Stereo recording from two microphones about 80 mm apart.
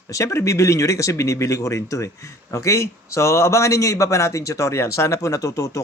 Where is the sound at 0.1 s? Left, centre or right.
Left.